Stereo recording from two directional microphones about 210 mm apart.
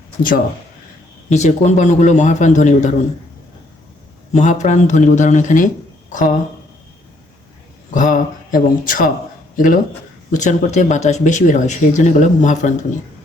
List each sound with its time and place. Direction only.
1.3 s speech: 35° left (ahead or behind)
4.4 s speech: 35° left (ahead or behind)
7.9 s speech: 40° left (ahead or behind)